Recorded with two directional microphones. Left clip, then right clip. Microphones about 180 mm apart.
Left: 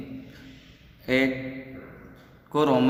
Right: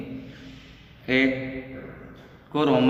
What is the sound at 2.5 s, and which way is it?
Speech, 45° left (ahead or behind).